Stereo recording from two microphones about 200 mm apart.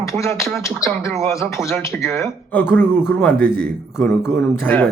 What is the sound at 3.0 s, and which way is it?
Speech, 5° right (ahead or behind).